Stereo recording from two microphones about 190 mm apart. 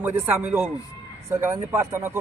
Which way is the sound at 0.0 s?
10° right (ahead or behind).